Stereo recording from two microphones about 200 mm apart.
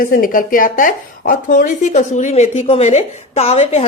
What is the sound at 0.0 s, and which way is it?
Speech, 45° left (ahead or behind).